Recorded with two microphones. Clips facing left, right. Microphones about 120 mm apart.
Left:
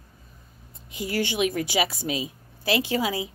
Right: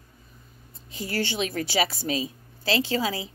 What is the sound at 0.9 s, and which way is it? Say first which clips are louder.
A woman's voice: left 2 dB; 15° left (ahead or behind).